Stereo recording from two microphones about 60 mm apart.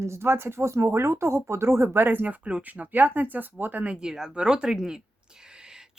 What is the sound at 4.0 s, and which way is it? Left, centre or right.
Speech, centre.